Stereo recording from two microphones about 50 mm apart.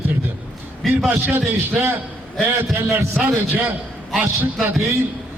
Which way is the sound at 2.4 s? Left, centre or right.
Right.